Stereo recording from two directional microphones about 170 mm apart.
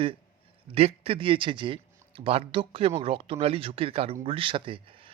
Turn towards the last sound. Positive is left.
turn(degrees=-30)  # may be behind; listen again after turning